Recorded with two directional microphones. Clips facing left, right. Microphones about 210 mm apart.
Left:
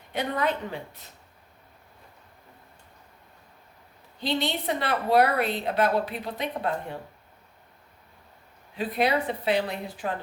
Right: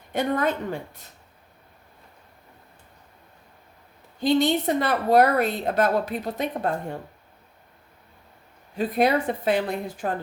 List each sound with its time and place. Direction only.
0.1 s a woman's voice: 45° right (ahead or behind)
4.2 s a woman's voice: 45° right (ahead or behind)
8.7 s a woman's voice: 45° right (ahead or behind)